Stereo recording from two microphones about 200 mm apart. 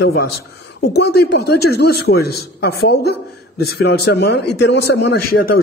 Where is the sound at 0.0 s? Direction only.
50° left (ahead or behind).